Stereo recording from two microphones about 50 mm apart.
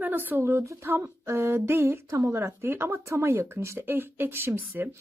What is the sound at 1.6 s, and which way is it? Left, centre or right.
Speech, right.